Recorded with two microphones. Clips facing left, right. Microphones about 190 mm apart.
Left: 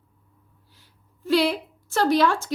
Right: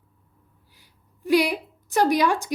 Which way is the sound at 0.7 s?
15° right (ahead or behind).